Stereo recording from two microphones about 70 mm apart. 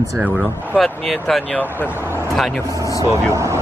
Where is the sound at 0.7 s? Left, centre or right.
Centre.